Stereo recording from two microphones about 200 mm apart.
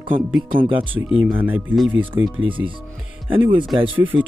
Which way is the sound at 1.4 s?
10° right (ahead or behind).